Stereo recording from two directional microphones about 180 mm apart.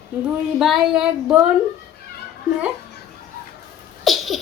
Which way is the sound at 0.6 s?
Centre (ahead or behind).